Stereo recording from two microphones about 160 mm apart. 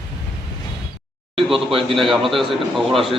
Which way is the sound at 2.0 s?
Centre (ahead or behind).